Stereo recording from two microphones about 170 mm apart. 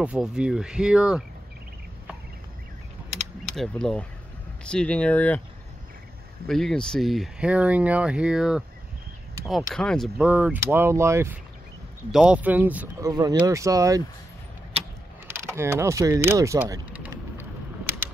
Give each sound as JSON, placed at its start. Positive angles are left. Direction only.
{"t": 0.0, "sound": "speech", "side_deg": -5}
{"t": 3.5, "sound": "speech", "side_deg": 5}
{"t": 6.4, "sound": "speech", "side_deg": 0}
{"t": 12.1, "sound": "speech", "side_deg": -5}
{"t": 13.0, "sound": "speech", "side_deg": -20}
{"t": 15.2, "sound": "speech", "side_deg": -15}